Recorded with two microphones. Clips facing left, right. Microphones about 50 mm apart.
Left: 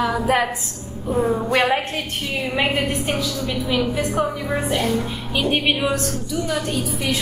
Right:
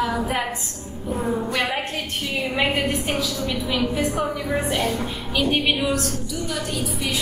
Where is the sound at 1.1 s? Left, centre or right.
Left.